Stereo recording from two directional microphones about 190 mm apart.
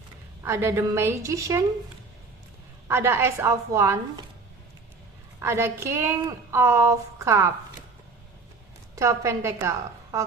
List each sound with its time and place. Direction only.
0.4 s a woman's voice: 15° right (ahead or behind)
2.8 s a woman's voice: 15° right (ahead or behind)
5.4 s a woman's voice: 15° right (ahead or behind)
9.0 s a woman's voice: 15° right (ahead or behind)